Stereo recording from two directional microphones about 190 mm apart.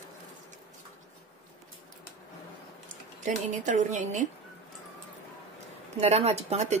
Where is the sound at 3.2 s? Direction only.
40° right (ahead or behind).